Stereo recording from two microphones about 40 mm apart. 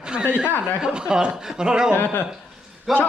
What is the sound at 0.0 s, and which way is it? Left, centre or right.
Snicker, right.